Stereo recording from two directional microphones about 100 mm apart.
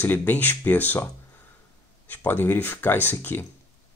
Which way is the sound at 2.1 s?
20° left (ahead or behind).